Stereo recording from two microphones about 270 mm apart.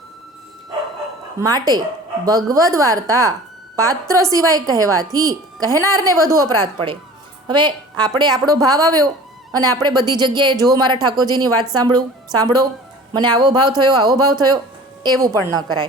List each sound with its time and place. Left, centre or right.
1.4 s speech: centre